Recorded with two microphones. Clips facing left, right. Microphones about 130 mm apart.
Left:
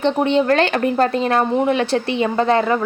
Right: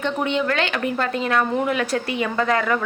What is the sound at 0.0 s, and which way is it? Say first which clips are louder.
A woman's voice: left 6 dB; 35° left (ahead or behind).